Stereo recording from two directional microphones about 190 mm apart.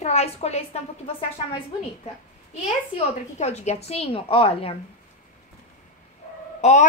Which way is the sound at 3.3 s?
35° left (ahead or behind).